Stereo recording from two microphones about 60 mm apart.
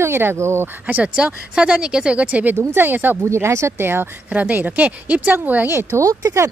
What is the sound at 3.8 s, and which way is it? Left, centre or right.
Speech, right.